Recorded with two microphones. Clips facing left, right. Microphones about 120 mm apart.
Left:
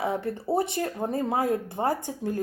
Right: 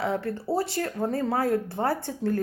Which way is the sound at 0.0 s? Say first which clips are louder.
Even; 20° left (ahead or behind).